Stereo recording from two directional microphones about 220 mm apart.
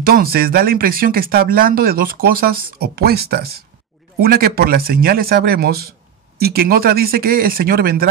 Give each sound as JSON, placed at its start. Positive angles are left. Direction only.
{"t": 0.0, "sound": "speech", "side_deg": -45}